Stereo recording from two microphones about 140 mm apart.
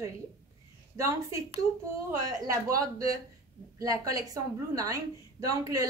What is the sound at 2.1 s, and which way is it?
A woman's voice, 25° right (ahead or behind).